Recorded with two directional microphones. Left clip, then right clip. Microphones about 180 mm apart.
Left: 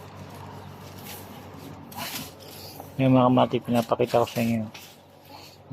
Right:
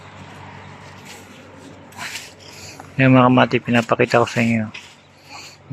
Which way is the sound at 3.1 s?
50° right (ahead or behind).